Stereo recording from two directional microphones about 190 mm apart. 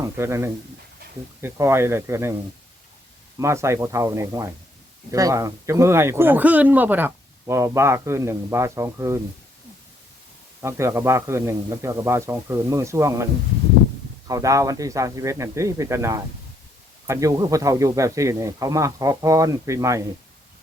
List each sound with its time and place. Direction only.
0.0 s speech: 15° right (ahead or behind)
3.3 s speech: 15° right (ahead or behind)
10.6 s speech: 15° right (ahead or behind)
14.3 s speech: 15° right (ahead or behind)